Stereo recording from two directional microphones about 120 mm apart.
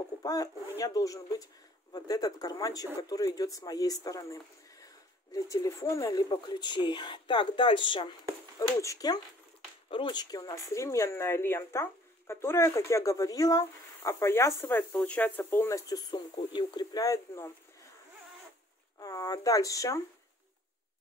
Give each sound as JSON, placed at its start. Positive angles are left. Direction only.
{"t": 0.2, "sound": "speech", "side_deg": 30}
{"t": 8.5, "sound": "speech", "side_deg": 30}
{"t": 9.8, "sound": "speech", "side_deg": 45}
{"t": 10.3, "sound": "speech", "side_deg": 30}
{"t": 15.9, "sound": "speech", "side_deg": 35}
{"t": 18.9, "sound": "speech", "side_deg": 30}